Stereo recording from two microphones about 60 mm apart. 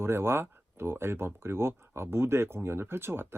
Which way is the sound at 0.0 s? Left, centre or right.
Right.